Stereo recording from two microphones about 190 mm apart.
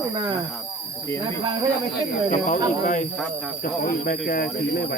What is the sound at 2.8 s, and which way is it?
Speech, 40° left (ahead or behind).